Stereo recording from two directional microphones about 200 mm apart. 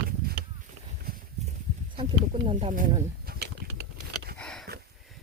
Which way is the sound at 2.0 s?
30° right (ahead or behind).